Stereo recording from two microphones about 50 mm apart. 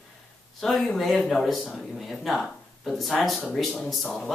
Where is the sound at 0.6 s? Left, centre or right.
Centre.